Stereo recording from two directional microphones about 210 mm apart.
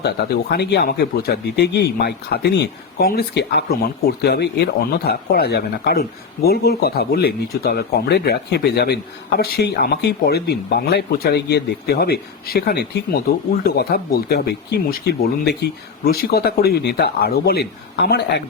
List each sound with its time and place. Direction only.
0.0 s speech: 50° left (ahead or behind)